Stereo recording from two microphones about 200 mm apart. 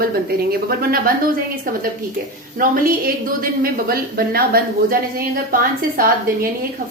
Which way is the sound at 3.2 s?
45° right (ahead or behind).